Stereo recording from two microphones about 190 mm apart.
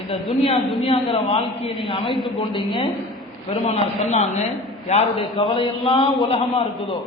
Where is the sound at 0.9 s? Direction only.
30° left (ahead or behind).